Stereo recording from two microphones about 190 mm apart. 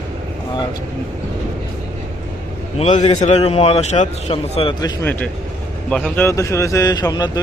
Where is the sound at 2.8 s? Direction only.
35° left (ahead or behind).